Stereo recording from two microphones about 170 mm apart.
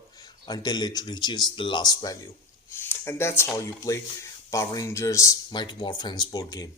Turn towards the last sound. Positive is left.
turn(degrees=20)  # may be behind; listen again after turning